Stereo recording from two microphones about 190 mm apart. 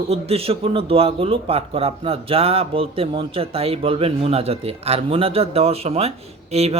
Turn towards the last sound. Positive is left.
turn(degrees=-35)  # may be behind; listen again after turning